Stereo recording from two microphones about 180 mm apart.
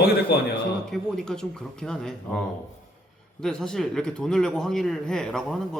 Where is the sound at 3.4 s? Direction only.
5° left (ahead or behind).